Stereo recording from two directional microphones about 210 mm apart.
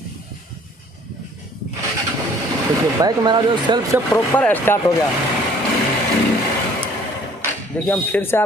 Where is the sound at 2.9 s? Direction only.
20° right (ahead or behind).